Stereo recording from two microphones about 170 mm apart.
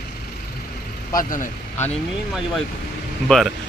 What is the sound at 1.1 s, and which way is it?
Speech, 55° left (ahead or behind).